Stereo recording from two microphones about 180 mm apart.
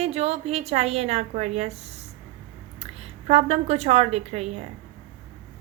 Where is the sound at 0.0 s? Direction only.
35° right (ahead or behind).